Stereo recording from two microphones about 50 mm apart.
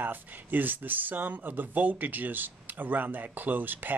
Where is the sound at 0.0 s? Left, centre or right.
Right.